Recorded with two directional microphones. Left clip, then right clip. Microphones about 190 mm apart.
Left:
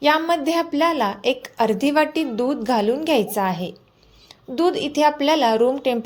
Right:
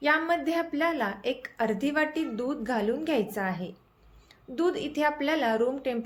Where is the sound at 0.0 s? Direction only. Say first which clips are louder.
Left 7 dB; 30° left (ahead or behind).